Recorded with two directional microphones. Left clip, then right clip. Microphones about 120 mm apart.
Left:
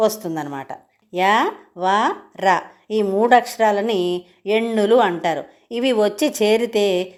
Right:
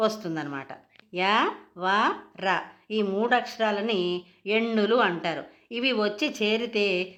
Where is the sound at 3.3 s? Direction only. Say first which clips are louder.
Left 12 dB; 40° left (ahead or behind).